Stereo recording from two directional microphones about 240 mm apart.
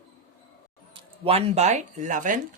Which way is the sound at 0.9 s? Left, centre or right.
Right.